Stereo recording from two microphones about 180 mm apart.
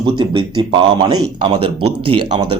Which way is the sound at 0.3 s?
30° right (ahead or behind).